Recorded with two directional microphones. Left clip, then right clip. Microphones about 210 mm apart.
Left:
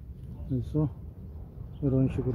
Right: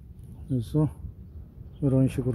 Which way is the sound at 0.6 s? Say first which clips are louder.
Right 4 dB; 40° right (ahead or behind).